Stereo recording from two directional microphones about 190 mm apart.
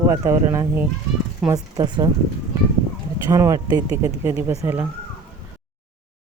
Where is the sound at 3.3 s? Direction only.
15° right (ahead or behind).